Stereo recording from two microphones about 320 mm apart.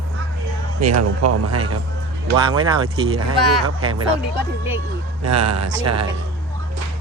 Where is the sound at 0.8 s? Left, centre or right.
Right.